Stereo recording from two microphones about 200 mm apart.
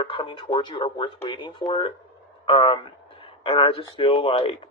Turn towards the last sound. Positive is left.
turn(degrees=25)  # may be behind; listen again after turning